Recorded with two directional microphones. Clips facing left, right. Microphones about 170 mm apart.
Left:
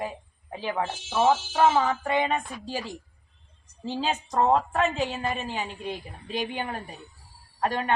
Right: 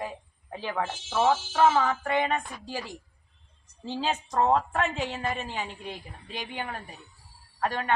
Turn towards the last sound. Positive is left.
turn(degrees=20)  # may be behind; listen again after turning